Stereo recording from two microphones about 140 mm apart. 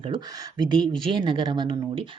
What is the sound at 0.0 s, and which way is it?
Speech, 30° right (ahead or behind).